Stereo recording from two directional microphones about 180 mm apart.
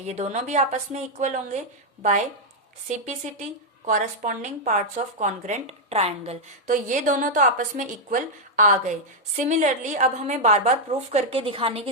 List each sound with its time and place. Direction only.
0.0 s a woman's voice: 35° right (ahead or behind)
3.8 s a woman's voice: 45° right (ahead or behind)